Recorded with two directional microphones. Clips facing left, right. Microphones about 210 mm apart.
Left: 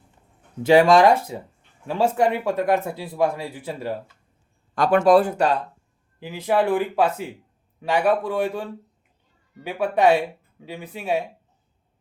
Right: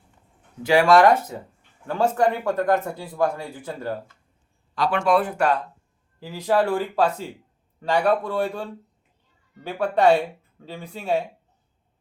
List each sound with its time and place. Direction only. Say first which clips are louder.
0.6 s speech: left 2 dB; 20° left (ahead or behind)
4.7 s speech: left 5 dB; 45° left (ahead or behind); by 7.0 s 20° left (ahead or behind)
7.8 s a man's voice: left 1 dB; 5° left (ahead or behind)
8.3 s speech: left 1 dB; 15° left (ahead or behind)
9.8 s speech: even; 15° left (ahead or behind)
10.8 s a man's voice: left 1 dB; 5° left (ahead or behind)